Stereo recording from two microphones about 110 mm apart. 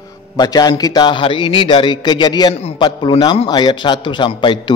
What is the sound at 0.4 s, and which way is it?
A man's voice, 35° left (ahead or behind).